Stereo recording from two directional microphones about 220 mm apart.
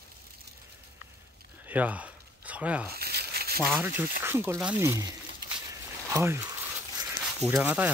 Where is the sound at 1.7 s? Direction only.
5° right (ahead or behind).